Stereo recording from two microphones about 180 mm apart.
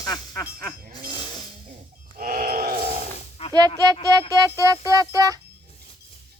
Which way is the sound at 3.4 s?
35° left (ahead or behind).